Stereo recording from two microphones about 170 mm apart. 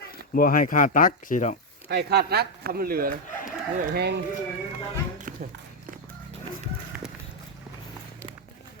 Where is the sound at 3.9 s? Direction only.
75° right (ahead or behind).